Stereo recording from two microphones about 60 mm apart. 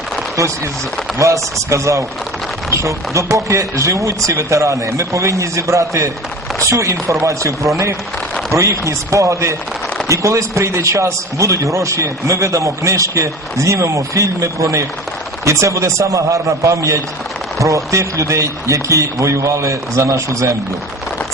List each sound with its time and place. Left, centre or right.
1.2 s a man's voice: right